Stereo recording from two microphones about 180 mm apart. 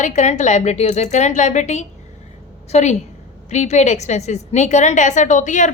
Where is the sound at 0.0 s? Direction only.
40° left (ahead or behind).